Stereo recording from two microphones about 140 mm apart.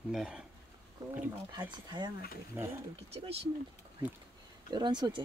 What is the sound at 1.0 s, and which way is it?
Speech, 30° right (ahead or behind).